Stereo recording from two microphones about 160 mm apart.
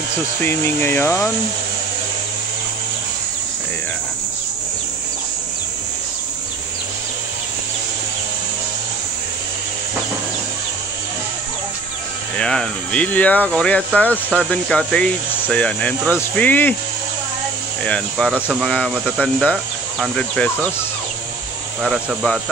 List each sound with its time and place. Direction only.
0.7 s speech: 15° left (ahead or behind)
12.4 s speech: 5° left (ahead or behind)
17.8 s speech: 5° left (ahead or behind)
21.8 s speech: 5° left (ahead or behind)